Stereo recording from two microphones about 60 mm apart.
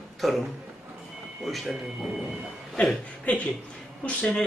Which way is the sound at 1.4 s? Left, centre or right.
Centre.